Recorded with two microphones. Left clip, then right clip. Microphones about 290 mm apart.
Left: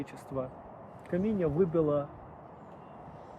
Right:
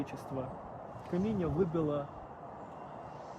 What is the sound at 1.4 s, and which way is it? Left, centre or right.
Speech, left.